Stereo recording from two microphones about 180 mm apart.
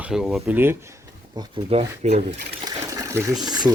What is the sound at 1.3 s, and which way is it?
Speech, 30° right (ahead or behind).